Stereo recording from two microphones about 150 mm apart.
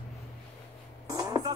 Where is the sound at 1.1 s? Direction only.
25° right (ahead or behind).